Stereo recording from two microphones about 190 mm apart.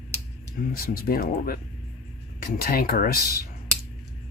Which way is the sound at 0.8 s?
50° left (ahead or behind).